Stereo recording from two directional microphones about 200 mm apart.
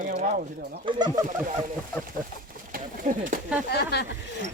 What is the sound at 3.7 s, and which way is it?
Speech, 55° left (ahead or behind).